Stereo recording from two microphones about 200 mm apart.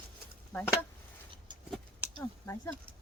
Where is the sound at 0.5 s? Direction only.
10° left (ahead or behind).